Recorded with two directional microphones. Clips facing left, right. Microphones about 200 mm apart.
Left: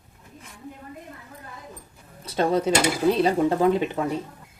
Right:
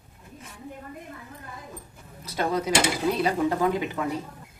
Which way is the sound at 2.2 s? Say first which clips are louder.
Left 5 dB; 30° left (ahead or behind).